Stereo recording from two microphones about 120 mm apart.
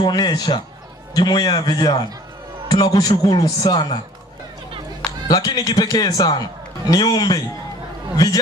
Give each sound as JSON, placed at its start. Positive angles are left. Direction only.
{"t": 0.0, "sound": "a man's voice", "side_deg": 35}
{"t": 5.3, "sound": "a man's voice", "side_deg": 35}